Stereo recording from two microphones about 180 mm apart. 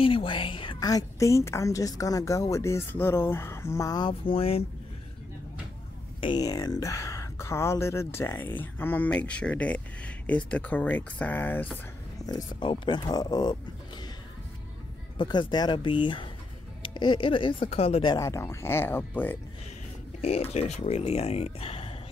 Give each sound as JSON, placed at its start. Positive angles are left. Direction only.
{"t": 0.0, "sound": "a woman's voice", "side_deg": 30}
{"t": 6.2, "sound": "speech", "side_deg": 25}
{"t": 12.3, "sound": "a woman's voice", "side_deg": 25}
{"t": 15.1, "sound": "a woman's voice", "side_deg": 25}
{"t": 20.2, "sound": "speech", "side_deg": 35}